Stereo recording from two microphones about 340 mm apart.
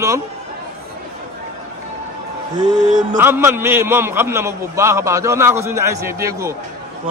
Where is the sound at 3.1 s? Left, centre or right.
Centre.